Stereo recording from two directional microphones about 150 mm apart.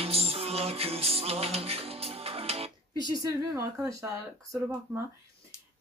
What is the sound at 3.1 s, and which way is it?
Speech, 20° right (ahead or behind).